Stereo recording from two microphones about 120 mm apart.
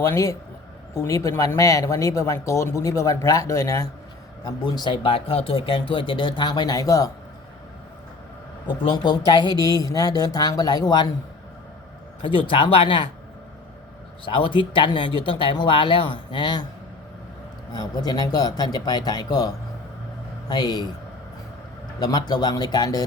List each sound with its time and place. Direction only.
0.0 s speech: 25° left (ahead or behind)
4.4 s speech: 35° left (ahead or behind)
8.6 s speech: 45° left (ahead or behind)
12.2 s speech: 45° left (ahead or behind)
14.3 s speech: 45° left (ahead or behind)
17.7 s speech: 35° left (ahead or behind)
20.5 s speech: 35° left (ahead or behind)
22.0 s speech: 35° left (ahead or behind)